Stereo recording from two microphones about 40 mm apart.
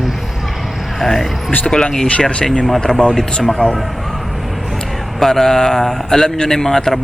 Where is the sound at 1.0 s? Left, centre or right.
Centre.